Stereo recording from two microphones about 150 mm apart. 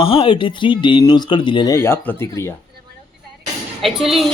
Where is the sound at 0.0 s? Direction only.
35° left (ahead or behind).